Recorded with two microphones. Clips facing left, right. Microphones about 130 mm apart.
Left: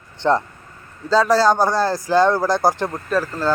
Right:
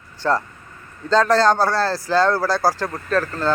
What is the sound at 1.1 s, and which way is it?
Speech, 10° left (ahead or behind).